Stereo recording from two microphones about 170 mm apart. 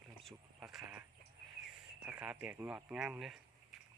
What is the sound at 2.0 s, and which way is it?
Speech, 10° right (ahead or behind).